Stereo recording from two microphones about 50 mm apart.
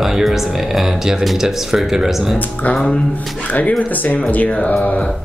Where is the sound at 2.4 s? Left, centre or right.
Left.